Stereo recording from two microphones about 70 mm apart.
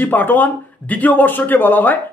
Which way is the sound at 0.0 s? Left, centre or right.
Left.